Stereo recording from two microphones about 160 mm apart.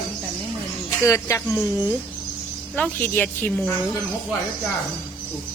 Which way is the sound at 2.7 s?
10° left (ahead or behind).